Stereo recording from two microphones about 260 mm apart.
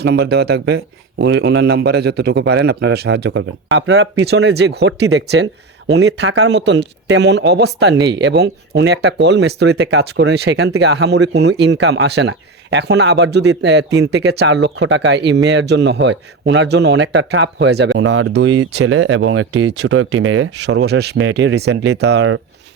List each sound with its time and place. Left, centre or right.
0.0 s speech: right